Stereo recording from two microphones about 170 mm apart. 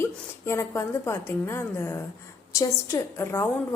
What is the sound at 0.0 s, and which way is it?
A woman's voice, 15° left (ahead or behind).